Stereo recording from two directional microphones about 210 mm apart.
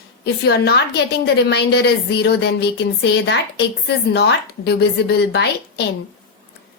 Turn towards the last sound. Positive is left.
turn(degrees=50)  # may be behind; listen again after turning